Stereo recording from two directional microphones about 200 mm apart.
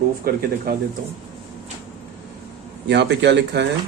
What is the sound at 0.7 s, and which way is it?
Speech, 50° right (ahead or behind).